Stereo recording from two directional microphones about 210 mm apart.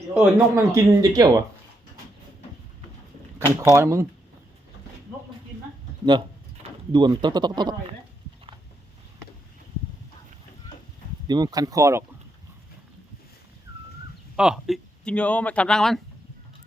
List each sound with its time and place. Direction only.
0.1 s speech: 10° right (ahead or behind)
3.6 s speech: 15° right (ahead or behind)
6.1 s speech: 20° right (ahead or behind)
11.3 s speech: 20° right (ahead or behind)
14.3 s speech: 5° right (ahead or behind)